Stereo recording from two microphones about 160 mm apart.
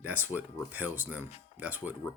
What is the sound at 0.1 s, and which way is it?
Speech, 10° right (ahead or behind).